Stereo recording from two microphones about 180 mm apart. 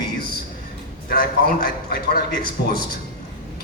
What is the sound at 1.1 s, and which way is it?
A man's voice, 55° left (ahead or behind).